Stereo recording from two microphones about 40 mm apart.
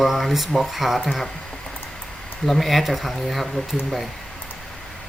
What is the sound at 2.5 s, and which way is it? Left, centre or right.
Speech, centre.